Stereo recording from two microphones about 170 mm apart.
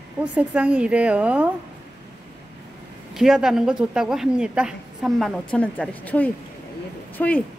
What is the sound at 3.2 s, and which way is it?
A woman's voice, 5° right (ahead or behind).